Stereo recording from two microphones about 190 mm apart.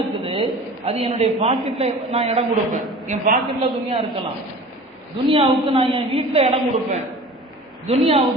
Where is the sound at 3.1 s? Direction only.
45° right (ahead or behind).